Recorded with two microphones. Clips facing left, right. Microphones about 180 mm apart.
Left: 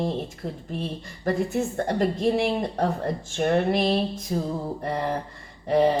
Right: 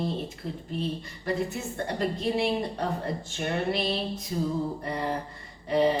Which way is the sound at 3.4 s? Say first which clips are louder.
Left 7 dB; 45° left (ahead or behind).